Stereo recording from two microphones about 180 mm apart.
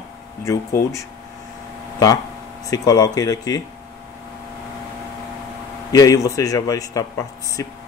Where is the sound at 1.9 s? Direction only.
20° left (ahead or behind).